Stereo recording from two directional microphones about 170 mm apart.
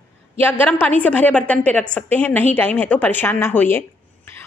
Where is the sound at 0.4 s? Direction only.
10° left (ahead or behind).